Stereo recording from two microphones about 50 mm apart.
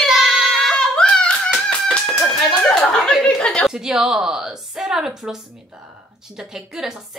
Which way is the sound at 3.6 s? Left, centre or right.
Centre.